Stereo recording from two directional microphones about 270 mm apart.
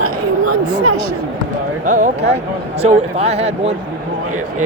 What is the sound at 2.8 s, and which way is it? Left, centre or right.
Speech, right.